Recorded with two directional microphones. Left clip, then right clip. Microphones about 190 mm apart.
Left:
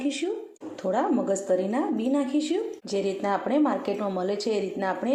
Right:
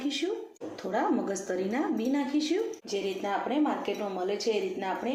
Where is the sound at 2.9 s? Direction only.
45° left (ahead or behind).